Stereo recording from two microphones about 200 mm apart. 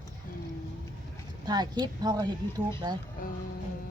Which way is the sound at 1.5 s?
20° right (ahead or behind).